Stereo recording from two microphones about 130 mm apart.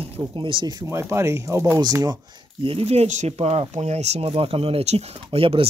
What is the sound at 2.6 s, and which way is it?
Speech, 50° right (ahead or behind).